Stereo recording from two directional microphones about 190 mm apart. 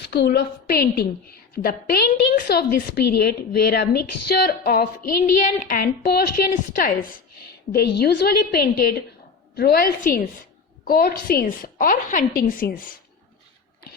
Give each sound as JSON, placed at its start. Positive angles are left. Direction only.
{"t": 0.0, "sound": "a woman's voice", "side_deg": 60}